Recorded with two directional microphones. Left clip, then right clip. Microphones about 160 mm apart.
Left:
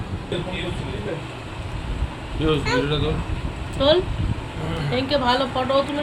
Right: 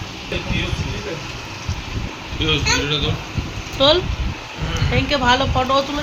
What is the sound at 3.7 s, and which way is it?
Speech, 15° right (ahead or behind).